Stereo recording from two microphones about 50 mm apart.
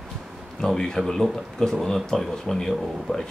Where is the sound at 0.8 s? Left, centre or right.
Centre.